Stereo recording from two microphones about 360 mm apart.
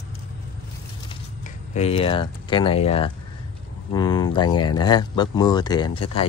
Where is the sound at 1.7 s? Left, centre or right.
Centre.